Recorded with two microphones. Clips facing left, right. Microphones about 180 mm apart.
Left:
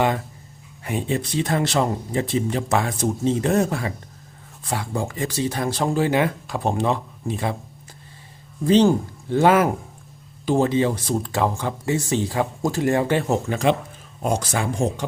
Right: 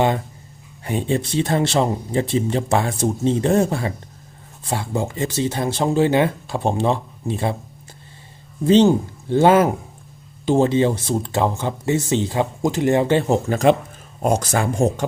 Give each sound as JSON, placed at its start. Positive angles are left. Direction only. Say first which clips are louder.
{"t": 0.9, "sound": "speech", "louder": "right 3 dB", "side_deg": -30}
{"t": 8.6, "sound": "speech", "louder": "right 2 dB", "side_deg": -25}
{"t": 13.5, "sound": "speech", "louder": "right 4 dB", "side_deg": -45}